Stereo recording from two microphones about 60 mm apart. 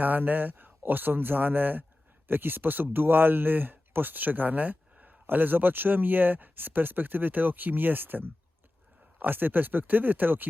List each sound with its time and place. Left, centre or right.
0.0 s speech: right